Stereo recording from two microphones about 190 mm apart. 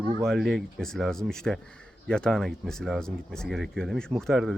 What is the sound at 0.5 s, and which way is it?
Speech, centre (ahead or behind).